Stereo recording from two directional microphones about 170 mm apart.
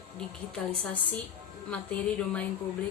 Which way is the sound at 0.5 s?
5° left (ahead or behind).